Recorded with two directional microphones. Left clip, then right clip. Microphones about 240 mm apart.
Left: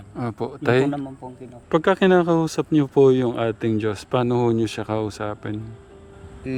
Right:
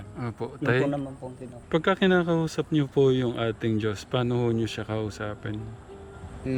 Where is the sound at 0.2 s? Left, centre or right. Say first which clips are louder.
Left 5 dB; left.